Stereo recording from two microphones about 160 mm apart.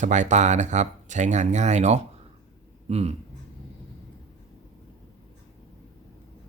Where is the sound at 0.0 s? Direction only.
50° right (ahead or behind).